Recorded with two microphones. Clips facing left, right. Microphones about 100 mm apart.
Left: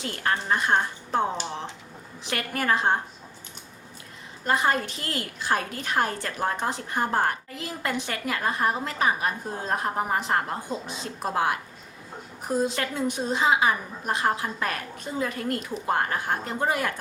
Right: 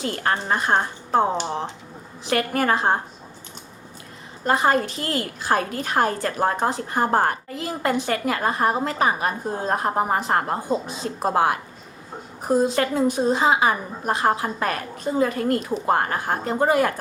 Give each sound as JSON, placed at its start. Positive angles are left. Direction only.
{"t": 0.0, "sound": "a woman's voice", "side_deg": -40}
{"t": 4.4, "sound": "a woman's voice", "side_deg": -40}